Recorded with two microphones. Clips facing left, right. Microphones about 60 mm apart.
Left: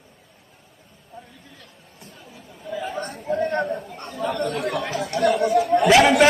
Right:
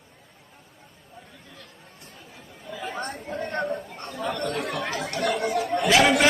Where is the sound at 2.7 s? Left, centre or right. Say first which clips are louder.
Left 3 dB; centre.